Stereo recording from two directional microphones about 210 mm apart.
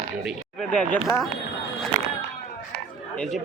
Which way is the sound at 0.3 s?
5° left (ahead or behind).